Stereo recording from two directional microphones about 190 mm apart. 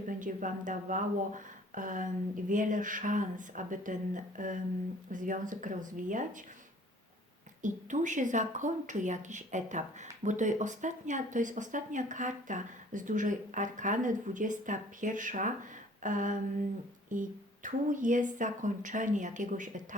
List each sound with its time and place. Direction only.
0.1 s a woman's voice: 45° right (ahead or behind)
7.6 s a woman's voice: 40° right (ahead or behind)